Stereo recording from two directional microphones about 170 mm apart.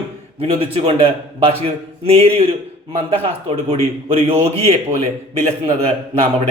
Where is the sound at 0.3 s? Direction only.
35° right (ahead or behind).